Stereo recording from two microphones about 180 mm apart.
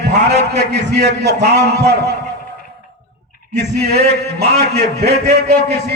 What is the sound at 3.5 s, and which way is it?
A man's voice, 65° right (ahead or behind).